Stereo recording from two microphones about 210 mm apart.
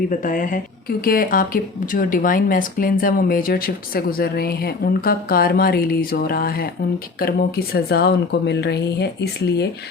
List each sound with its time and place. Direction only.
0.1 s speech: 40° left (ahead or behind)